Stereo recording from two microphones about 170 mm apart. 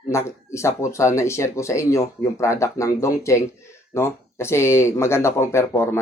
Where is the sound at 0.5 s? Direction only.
15° left (ahead or behind).